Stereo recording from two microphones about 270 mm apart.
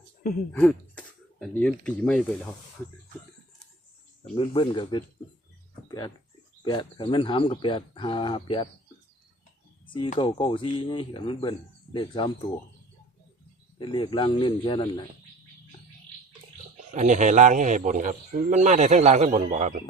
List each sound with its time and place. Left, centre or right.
0.5 s speech: centre
4.2 s speech: centre
6.7 s speech: centre
9.8 s speech: centre
13.7 s speech: centre
16.9 s speech: right